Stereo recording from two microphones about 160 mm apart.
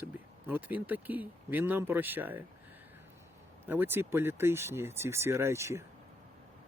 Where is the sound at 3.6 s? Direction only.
15° right (ahead or behind).